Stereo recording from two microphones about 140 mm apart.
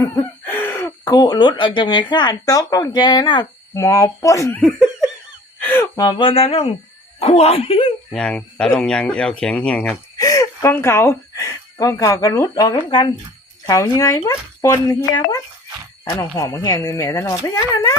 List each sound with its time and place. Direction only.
0.4 s speech: 15° left (ahead or behind)
4.6 s laughter: 5° right (ahead or behind)
5.5 s a sound: 10° left (ahead or behind)
5.8 s speech: 30° left (ahead or behind)
8.1 s speech: 5° left (ahead or behind)
10.2 s speech: 25° left (ahead or behind)